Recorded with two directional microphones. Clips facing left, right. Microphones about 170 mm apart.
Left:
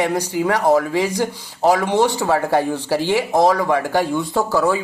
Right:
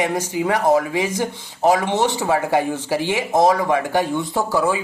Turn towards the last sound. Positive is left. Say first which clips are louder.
# left 2 dB
turn(degrees=-15)  # may be behind; listen again after turning